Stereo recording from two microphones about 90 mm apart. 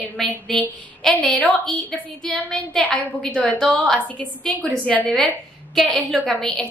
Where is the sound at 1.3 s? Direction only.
15° left (ahead or behind).